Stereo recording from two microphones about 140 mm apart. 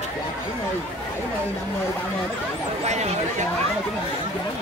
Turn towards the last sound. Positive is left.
turn(degrees=-55)  # may be behind; listen again after turning